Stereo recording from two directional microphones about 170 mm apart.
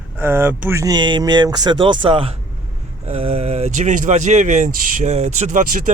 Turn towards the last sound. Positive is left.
turn(degrees=-50)  # may be behind; listen again after turning